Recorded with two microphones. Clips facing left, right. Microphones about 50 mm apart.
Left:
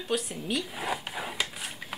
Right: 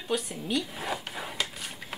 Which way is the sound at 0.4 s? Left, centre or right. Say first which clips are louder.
Right 1 dB; centre.